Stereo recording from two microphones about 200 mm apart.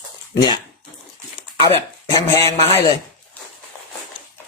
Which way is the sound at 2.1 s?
10° left (ahead or behind).